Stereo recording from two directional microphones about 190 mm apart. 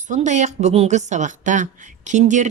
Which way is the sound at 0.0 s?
40° right (ahead or behind).